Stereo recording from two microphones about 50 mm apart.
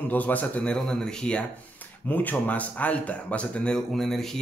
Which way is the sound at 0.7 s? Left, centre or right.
Centre.